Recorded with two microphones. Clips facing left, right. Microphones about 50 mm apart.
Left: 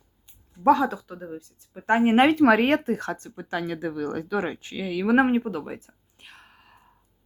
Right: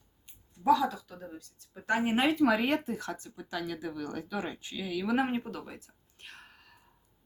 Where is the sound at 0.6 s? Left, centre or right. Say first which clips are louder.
Left 6 dB; left.